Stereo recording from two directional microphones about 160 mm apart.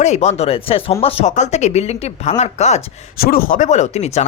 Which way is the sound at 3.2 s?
65° left (ahead or behind).